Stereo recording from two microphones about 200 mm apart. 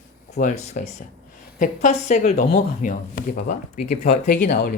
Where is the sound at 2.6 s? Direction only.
45° left (ahead or behind).